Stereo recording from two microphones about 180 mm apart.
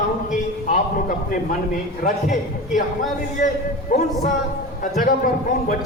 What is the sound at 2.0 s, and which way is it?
A man's voice, 45° left (ahead or behind).